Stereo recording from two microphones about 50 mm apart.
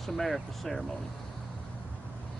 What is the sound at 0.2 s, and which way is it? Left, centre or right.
Speech, centre.